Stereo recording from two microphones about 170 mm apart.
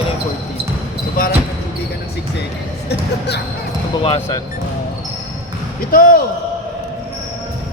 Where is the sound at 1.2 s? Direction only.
55° left (ahead or behind).